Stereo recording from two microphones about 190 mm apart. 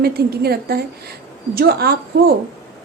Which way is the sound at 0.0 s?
55° right (ahead or behind).